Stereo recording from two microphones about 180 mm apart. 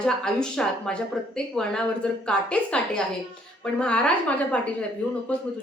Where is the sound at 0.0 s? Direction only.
5° left (ahead or behind).